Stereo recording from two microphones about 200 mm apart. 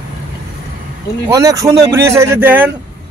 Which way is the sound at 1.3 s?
15° right (ahead or behind).